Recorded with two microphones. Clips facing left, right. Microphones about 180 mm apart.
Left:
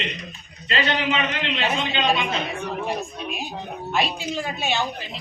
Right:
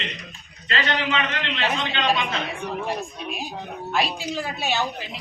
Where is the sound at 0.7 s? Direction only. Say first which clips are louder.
Left 2 dB; 15° left (ahead or behind).